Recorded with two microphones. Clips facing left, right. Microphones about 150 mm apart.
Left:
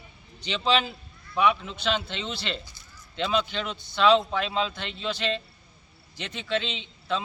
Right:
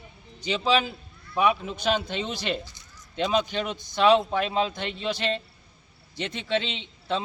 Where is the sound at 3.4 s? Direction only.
50° right (ahead or behind).